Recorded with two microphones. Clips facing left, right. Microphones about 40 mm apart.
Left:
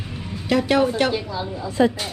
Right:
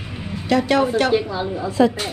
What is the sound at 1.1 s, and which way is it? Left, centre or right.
Speech, centre.